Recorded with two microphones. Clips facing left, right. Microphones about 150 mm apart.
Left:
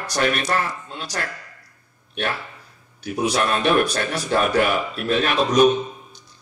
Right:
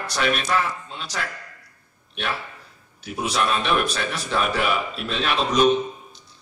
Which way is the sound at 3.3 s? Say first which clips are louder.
Left 2 dB; 50° left (ahead or behind).